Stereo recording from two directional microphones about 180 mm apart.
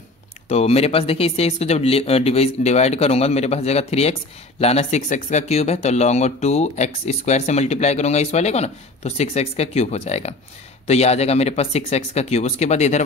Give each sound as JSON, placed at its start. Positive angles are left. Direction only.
{"t": 0.5, "sound": "speech", "side_deg": 35}